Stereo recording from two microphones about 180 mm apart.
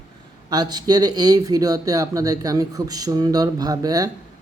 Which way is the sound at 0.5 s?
20° right (ahead or behind).